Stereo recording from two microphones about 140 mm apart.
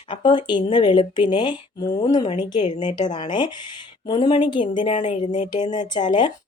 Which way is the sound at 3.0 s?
30° left (ahead or behind).